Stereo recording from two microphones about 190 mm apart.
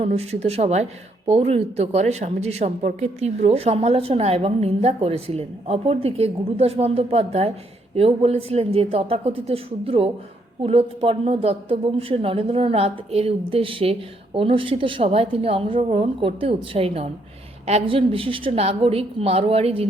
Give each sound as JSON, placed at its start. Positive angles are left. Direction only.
{"t": 0.0, "sound": "a woman's voice", "side_deg": -35}